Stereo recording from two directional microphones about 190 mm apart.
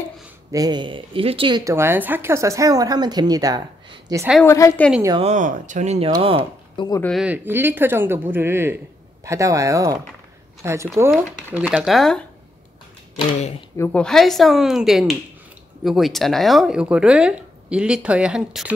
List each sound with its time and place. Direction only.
0.5 s speech: 20° right (ahead or behind)
4.5 s a woman's voice: 15° left (ahead or behind)
5.2 s speech: 40° right (ahead or behind)
7.0 s speech: 5° left (ahead or behind)
7.2 s speech: 10° right (ahead or behind)
13.1 s speech: 35° left (ahead or behind)
13.7 s speech: 10° left (ahead or behind)